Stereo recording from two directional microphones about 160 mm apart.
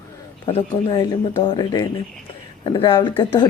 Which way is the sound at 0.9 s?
25° left (ahead or behind).